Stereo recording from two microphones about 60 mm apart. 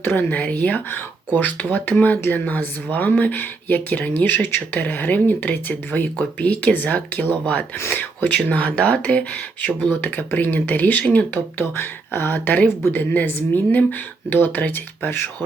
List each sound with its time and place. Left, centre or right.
0.0 s speech: left
0.3 s speech: left
11.5 s speech: left